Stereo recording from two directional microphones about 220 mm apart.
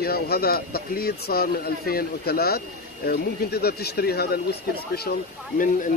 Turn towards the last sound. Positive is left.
turn(degrees=40)  # may be behind; listen again after turning